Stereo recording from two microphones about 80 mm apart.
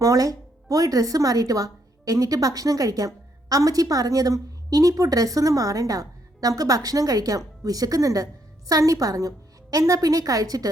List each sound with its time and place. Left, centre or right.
0.0 s speech: right